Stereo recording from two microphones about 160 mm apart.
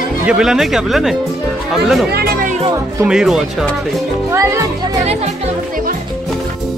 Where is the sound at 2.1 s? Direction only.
90° right.